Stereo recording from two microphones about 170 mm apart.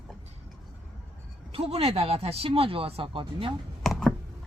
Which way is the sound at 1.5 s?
35° right (ahead or behind).